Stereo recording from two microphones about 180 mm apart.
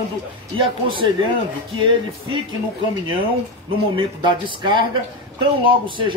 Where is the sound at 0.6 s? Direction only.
30° right (ahead or behind).